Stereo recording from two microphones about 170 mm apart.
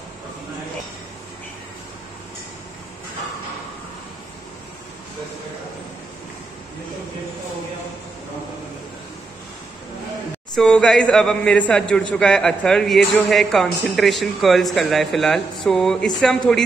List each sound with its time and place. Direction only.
10.5 s speech: 5° left (ahead or behind)